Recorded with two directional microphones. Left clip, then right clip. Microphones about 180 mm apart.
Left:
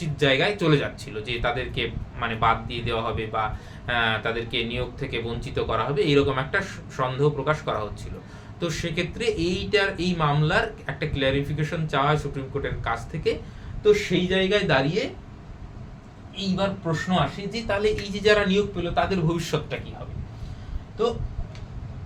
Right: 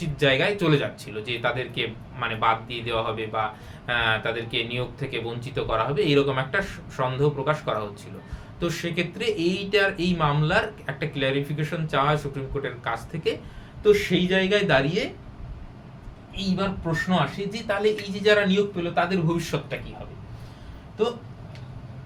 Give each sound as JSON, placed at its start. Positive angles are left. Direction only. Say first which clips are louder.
{"t": 0.0, "sound": "a man's voice", "louder": "even", "side_deg": 5}
{"t": 16.6, "sound": "speech", "louder": "left 1 dB", "side_deg": 10}